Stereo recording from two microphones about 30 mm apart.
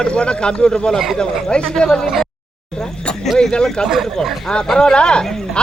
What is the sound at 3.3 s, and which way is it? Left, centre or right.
Speech, left.